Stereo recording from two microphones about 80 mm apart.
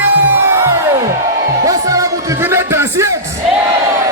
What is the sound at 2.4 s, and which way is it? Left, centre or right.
Music, right.